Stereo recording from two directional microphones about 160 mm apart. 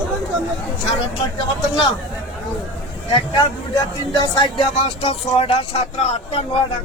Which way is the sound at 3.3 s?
25° left (ahead or behind).